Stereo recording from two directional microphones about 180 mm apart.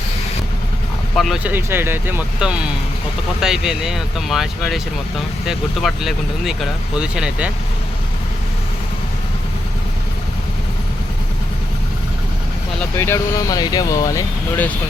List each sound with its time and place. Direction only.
1.1 s speech: centre (ahead or behind)
1.5 s speech: 10° right (ahead or behind)
13.0 s speech: 15° left (ahead or behind)